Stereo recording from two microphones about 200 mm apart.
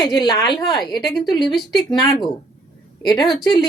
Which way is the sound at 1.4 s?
Centre (ahead or behind).